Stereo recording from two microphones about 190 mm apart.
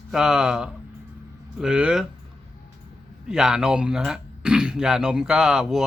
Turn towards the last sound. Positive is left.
turn(degrees=0)  # may be behind; listen again after turning